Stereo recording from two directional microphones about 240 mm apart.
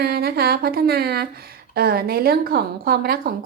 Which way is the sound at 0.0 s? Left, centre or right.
Right.